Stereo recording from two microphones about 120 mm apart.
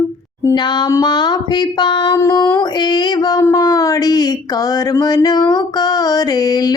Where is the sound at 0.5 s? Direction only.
35° left (ahead or behind).